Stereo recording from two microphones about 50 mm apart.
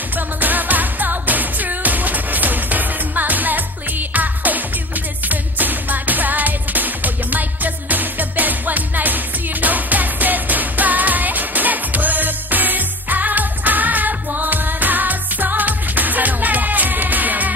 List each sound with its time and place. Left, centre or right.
0.4 s music: right